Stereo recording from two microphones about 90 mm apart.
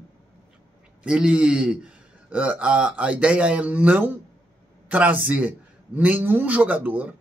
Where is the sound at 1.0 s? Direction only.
10° right (ahead or behind).